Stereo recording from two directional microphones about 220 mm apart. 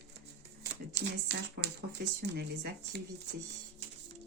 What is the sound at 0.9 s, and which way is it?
Speech, 50° right (ahead or behind).